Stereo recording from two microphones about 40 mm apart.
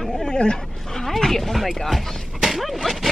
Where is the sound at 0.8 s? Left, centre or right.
Centre.